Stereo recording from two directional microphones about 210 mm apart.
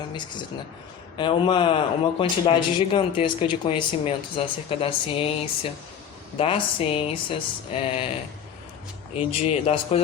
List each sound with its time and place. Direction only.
0.1 s speech: 20° left (ahead or behind)
6.3 s speech: 25° left (ahead or behind)
9.1 s speech: 30° left (ahead or behind)